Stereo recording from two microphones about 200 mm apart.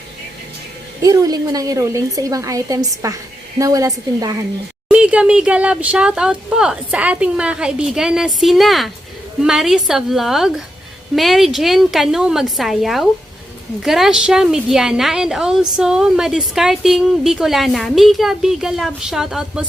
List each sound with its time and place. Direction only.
1.0 s a woman's voice: 20° right (ahead or behind)
4.9 s speech: 5° right (ahead or behind)